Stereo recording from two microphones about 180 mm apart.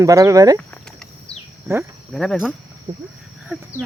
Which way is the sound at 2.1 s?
Centre (ahead or behind).